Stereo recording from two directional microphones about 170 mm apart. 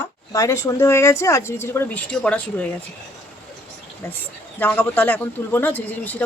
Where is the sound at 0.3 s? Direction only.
15° left (ahead or behind).